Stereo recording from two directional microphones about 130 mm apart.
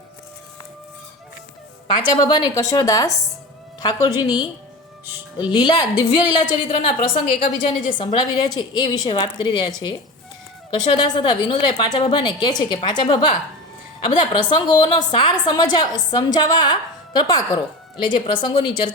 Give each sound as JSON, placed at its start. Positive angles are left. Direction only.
{"t": 1.9, "sound": "a woman's voice", "side_deg": 35}